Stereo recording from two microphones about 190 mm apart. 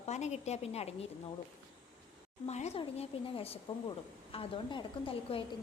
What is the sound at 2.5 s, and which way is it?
A woman's voice, 35° left (ahead or behind).